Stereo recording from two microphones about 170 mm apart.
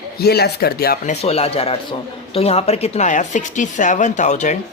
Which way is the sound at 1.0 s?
35° left (ahead or behind).